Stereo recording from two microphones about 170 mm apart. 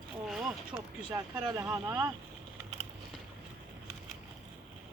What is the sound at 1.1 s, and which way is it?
Speech, 20° right (ahead or behind).